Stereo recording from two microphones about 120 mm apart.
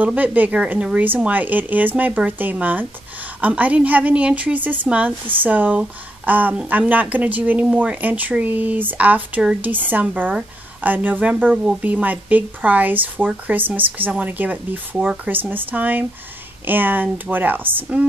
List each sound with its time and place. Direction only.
0.0 s a woman's voice: 15° right (ahead or behind)